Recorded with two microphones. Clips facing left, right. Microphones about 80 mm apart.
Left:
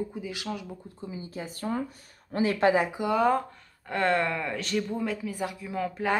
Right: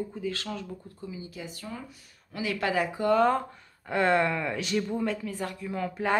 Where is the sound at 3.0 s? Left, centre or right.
Centre.